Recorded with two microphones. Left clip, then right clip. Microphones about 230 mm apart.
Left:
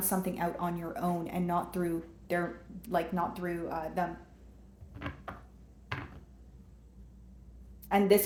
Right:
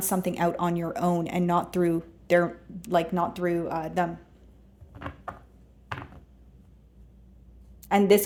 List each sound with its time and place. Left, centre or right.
0.0 s speech: right
4.9 s a sound: right
7.9 s speech: right